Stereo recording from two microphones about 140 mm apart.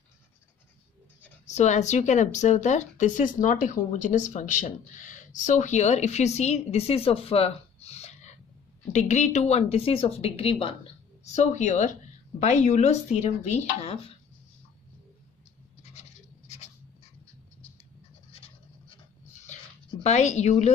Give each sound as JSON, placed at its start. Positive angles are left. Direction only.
{"t": 1.4, "sound": "speech", "side_deg": 55}
{"t": 11.2, "sound": "speech", "side_deg": 60}
{"t": 15.8, "sound": "scratch", "side_deg": 55}
{"t": 18.3, "sound": "scratch", "side_deg": 45}
{"t": 19.5, "sound": "a sound", "side_deg": 55}
{"t": 20.0, "sound": "speech", "side_deg": 55}